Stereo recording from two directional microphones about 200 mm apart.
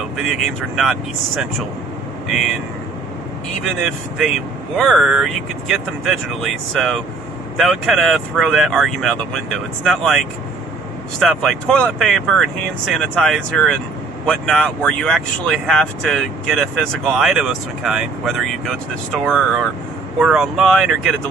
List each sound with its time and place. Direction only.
0.2 s speech: centre (ahead or behind)
4.7 s speech: centre (ahead or behind)